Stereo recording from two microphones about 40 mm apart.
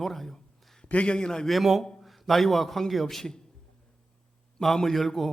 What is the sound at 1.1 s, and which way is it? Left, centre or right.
Speech, centre.